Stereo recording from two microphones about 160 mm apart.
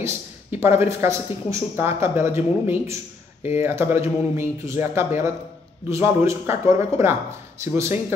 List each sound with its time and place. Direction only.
0.0 s speech: 15° right (ahead or behind)